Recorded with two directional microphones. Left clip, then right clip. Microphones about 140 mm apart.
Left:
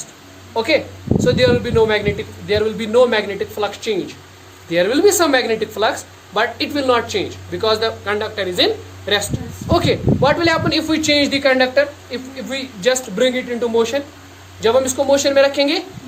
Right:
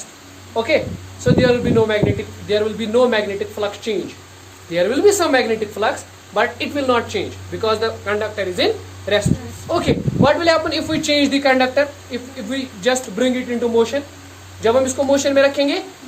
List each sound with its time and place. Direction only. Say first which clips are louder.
0.5 s a man's voice: left 1 dB; 50° left (ahead or behind)